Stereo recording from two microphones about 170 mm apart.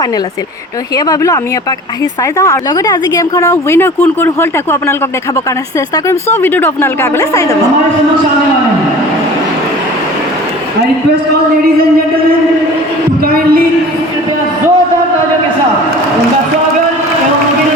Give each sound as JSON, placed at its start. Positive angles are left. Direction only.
{"t": 0.9, "sound": "speech", "side_deg": 20}
{"t": 2.4, "sound": "speech", "side_deg": 20}
{"t": 6.1, "sound": "speech", "side_deg": 15}
{"t": 13.2, "sound": "a sound", "side_deg": -60}